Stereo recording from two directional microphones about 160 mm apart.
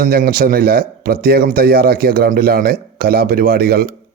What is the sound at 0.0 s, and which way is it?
Speech, 65° right (ahead or behind).